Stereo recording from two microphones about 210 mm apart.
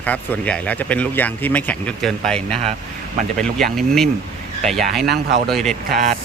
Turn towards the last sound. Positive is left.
turn(degrees=0)  # may be behind; listen again after turning